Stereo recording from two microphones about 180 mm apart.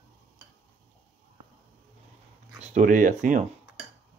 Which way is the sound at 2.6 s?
45° right (ahead or behind).